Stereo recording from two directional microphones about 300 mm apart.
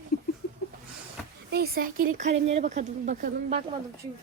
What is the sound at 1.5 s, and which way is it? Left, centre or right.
Speech, right.